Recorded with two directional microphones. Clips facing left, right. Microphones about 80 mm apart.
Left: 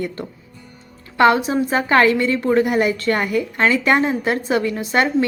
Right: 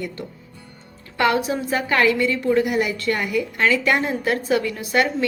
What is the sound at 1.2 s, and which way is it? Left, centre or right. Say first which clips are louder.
A woman's voice: left 5 dB; left.